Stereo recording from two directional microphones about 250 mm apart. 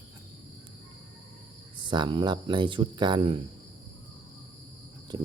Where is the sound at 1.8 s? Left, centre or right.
Centre.